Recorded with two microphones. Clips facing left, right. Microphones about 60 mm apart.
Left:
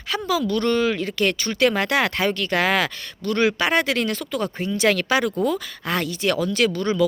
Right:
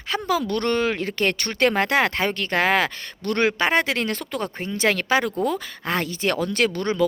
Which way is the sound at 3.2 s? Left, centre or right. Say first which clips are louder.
Left 1 dB; right.